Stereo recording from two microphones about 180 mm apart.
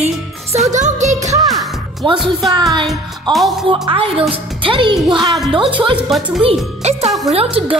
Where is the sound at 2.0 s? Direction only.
25° right (ahead or behind).